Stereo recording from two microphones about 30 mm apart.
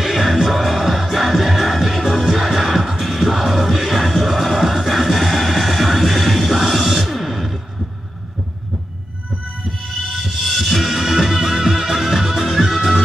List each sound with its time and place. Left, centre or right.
0.0 s music: centre
0.5 s music: centre
7.2 s music: centre
9.7 s music: centre
10.9 s music: centre